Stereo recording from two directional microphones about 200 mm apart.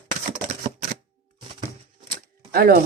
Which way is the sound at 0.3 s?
40° right (ahead or behind).